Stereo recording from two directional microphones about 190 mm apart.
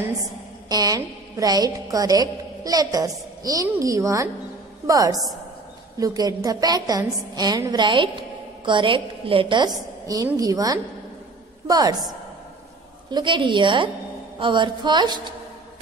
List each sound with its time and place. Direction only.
0.7 s a woman's voice: 20° right (ahead or behind)
13.1 s a woman's voice: 25° right (ahead or behind)